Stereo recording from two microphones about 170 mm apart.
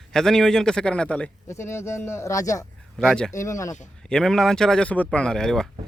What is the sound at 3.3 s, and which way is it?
Speech, 15° left (ahead or behind).